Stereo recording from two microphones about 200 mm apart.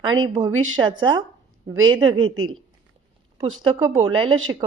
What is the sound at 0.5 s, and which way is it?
Speech, 90° right.